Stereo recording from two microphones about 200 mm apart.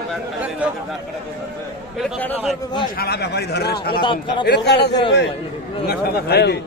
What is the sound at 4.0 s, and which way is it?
Speech, 25° left (ahead or behind).